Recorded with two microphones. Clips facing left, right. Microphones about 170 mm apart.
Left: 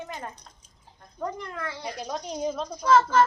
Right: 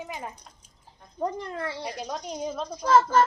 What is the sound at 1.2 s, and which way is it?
Speech, 30° right (ahead or behind).